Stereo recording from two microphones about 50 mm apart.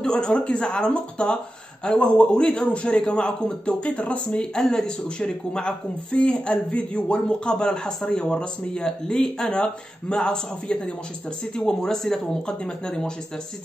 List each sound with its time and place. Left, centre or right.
0.0 s a man's voice: centre
4.4 s speech: centre